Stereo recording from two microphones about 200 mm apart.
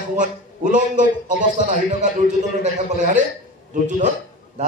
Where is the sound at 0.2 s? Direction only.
40° right (ahead or behind).